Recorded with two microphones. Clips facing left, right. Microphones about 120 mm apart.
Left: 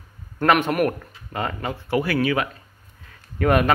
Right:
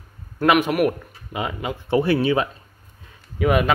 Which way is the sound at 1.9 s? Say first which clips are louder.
Right 3 dB; 25° right (ahead or behind).